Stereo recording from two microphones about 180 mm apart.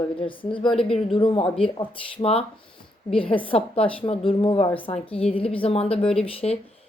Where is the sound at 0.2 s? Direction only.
30° left (ahead or behind).